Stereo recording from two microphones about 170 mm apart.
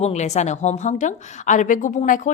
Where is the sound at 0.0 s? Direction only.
40° left (ahead or behind).